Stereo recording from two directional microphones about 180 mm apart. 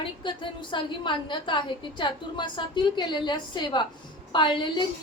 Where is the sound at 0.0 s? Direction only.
25° left (ahead or behind).